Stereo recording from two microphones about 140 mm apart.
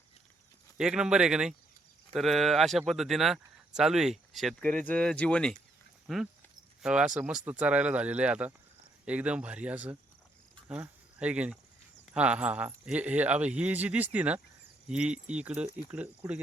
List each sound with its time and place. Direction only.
0.8 s speech: 5° right (ahead or behind)